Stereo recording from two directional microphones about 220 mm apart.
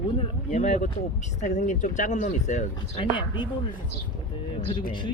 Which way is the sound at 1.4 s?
35° left (ahead or behind).